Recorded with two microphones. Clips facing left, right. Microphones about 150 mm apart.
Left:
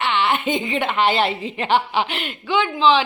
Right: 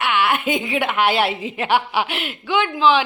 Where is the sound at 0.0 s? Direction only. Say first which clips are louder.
Right 1 dB; 10° right (ahead or behind).